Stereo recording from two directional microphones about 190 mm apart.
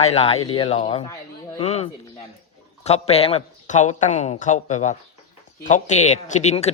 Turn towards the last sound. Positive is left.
turn(degrees=35)  # may be behind; listen again after turning